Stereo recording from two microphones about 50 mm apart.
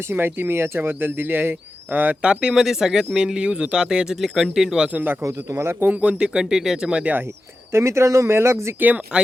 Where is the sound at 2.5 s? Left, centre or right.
Centre.